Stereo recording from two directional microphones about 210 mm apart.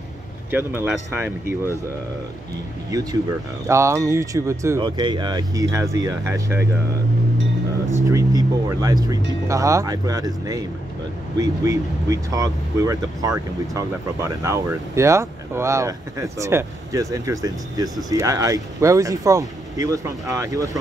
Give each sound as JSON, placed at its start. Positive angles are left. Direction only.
{"t": 0.5, "sound": "speech", "side_deg": -10}
{"t": 2.9, "sound": "speech", "side_deg": -15}
{"t": 8.1, "sound": "speech", "side_deg": -15}